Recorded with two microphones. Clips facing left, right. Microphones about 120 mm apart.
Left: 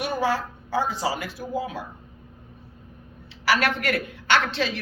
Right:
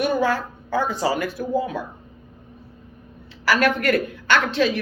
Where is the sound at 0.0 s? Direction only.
50° right (ahead or behind).